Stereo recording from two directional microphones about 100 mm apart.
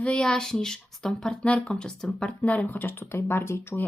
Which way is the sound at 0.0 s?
10° left (ahead or behind).